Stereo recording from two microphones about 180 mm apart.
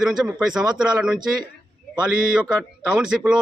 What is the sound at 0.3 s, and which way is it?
Speech, 5° right (ahead or behind).